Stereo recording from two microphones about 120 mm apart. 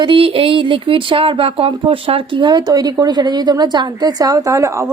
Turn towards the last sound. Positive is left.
turn(degrees=-25)  # may be behind; listen again after turning